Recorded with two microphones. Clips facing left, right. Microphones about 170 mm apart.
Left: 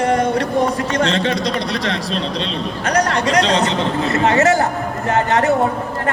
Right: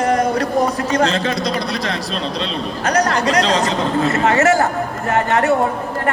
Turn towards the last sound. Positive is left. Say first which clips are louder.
# even
turn(degrees=20)  # may be behind; listen again after turning